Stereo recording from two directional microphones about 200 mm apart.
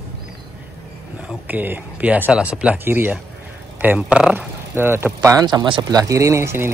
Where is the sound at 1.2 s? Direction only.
10° right (ahead or behind).